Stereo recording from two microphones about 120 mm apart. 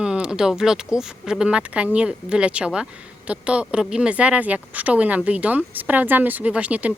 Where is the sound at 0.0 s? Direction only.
5° right (ahead or behind).